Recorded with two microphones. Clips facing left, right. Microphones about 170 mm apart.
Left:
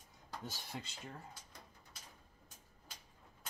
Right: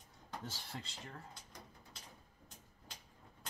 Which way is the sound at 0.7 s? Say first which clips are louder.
Left 2 dB; 10° left (ahead or behind).